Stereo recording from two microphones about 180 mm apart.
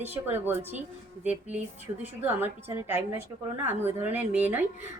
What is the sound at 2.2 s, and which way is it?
A woman's voice, 10° right (ahead or behind).